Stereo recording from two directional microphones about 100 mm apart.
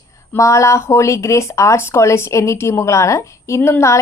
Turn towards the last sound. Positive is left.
turn(degrees=30)  # may be behind; listen again after turning